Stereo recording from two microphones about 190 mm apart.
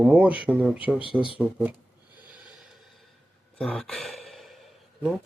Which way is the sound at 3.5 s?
Centre (ahead or behind).